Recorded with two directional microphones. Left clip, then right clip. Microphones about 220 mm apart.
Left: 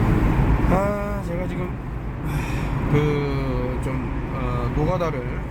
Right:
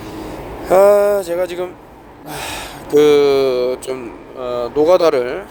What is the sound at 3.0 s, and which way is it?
Speech, 50° right (ahead or behind).